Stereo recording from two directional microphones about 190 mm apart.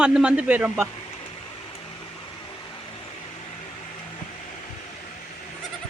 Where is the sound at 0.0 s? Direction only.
5° right (ahead or behind).